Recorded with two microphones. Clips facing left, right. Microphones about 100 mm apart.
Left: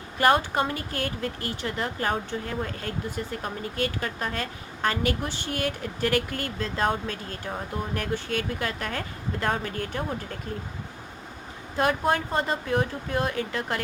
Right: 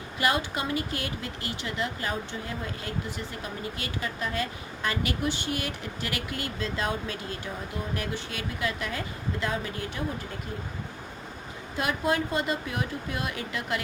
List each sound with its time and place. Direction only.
0.2 s a woman's voice: 45° left (ahead or behind)
11.8 s speech: 45° left (ahead or behind)